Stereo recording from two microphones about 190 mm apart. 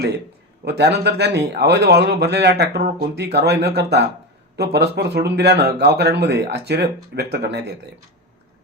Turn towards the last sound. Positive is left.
turn(degrees=-60)  # may be behind; listen again after turning